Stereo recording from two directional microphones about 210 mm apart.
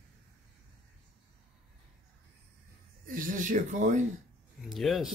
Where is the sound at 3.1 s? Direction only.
40° right (ahead or behind).